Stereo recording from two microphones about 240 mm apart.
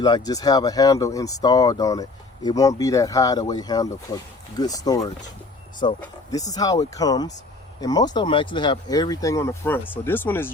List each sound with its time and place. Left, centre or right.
0.0 s speech: centre